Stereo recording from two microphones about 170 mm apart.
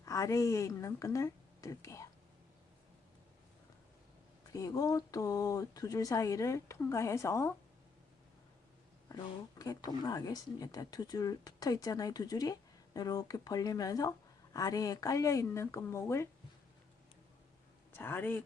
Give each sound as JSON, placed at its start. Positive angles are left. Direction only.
{"t": 0.0, "sound": "speech", "side_deg": 20}
{"t": 4.5, "sound": "speech", "side_deg": 20}
{"t": 9.0, "sound": "speech", "side_deg": 20}
{"t": 17.9, "sound": "speech", "side_deg": 10}